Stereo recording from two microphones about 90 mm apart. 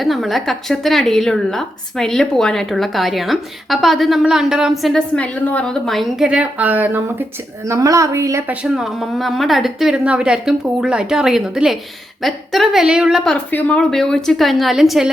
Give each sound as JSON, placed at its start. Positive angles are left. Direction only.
{"t": 0.0, "sound": "a woman's voice", "side_deg": 0}
{"t": 5.8, "sound": "a woman's voice", "side_deg": 0}
{"t": 6.2, "sound": "speech", "side_deg": -10}
{"t": 7.7, "sound": "a woman's voice", "side_deg": -40}
{"t": 8.7, "sound": "a woman's voice", "side_deg": -5}
{"t": 13.5, "sound": "speech", "side_deg": 20}
{"t": 13.7, "sound": "a woman's voice", "side_deg": 5}